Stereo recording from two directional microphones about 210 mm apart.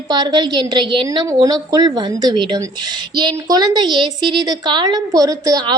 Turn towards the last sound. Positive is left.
turn(degrees=-15)  # may be behind; listen again after turning